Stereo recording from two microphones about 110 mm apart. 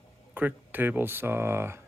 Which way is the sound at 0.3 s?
15° right (ahead or behind).